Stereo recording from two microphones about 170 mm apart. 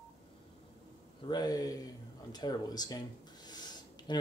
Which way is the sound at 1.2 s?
25° left (ahead or behind).